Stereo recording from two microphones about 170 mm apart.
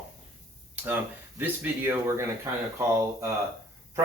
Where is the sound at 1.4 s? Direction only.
10° right (ahead or behind).